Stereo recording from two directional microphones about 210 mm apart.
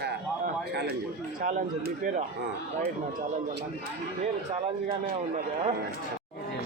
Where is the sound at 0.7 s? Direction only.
55° right (ahead or behind).